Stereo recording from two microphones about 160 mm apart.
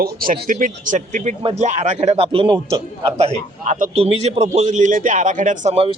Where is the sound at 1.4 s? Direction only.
40° right (ahead or behind).